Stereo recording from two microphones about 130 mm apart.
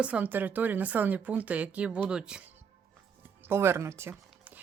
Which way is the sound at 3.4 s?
20° right (ahead or behind).